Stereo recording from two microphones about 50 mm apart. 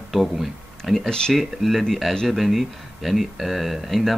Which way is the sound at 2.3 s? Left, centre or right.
Centre.